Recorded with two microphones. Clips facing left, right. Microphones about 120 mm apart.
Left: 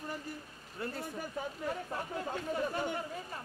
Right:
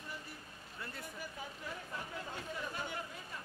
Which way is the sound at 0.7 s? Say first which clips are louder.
Left 8 dB; 40° left (ahead or behind).